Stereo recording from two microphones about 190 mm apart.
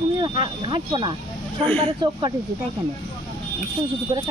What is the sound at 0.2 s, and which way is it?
Speech, 25° right (ahead or behind).